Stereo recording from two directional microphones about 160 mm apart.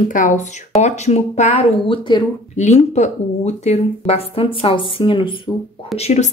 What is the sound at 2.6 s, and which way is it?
Speech, 45° left (ahead or behind).